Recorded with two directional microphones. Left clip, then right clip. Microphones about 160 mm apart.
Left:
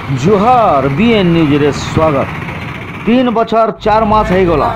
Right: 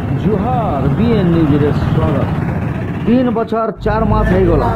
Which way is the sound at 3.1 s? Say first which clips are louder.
Left 4 dB; 10° left (ahead or behind).